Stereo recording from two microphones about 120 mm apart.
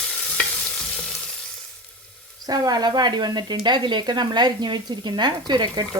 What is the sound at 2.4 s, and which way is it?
Speech, 30° right (ahead or behind).